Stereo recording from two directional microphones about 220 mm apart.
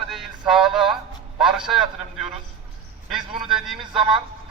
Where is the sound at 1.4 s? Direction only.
Centre (ahead or behind).